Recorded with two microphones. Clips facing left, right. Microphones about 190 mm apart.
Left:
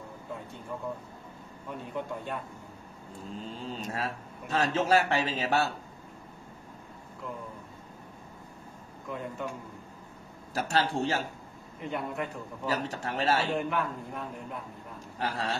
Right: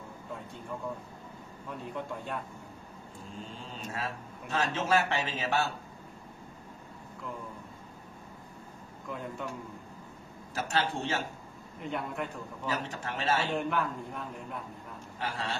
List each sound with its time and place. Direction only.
1.7 s a man's voice: centre (ahead or behind)
3.6 s a man's voice: 35° left (ahead or behind)
9.1 s a man's voice: centre (ahead or behind)
10.5 s a man's voice: 40° left (ahead or behind)
11.8 s a man's voice: centre (ahead or behind)
12.6 s a man's voice: 40° left (ahead or behind)
13.6 s a man's voice: centre (ahead or behind)
15.1 s a man's voice: 40° left (ahead or behind)